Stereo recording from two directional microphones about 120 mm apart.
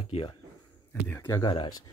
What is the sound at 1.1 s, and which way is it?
Speech, 20° left (ahead or behind).